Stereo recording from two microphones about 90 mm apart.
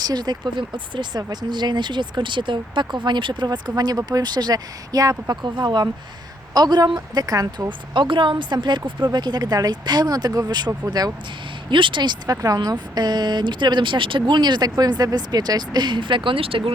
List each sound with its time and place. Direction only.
0.0 s speech: 50° right (ahead or behind)
3.4 s speech: 50° right (ahead or behind)
5.3 s speech: 55° right (ahead or behind)
7.7 s speech: 65° right (ahead or behind); by 10.7 s 45° right (ahead or behind)
11.7 s speech: 65° right (ahead or behind); by 16.7 s 90° right